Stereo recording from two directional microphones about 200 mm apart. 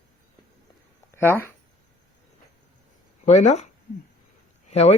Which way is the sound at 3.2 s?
35° left (ahead or behind).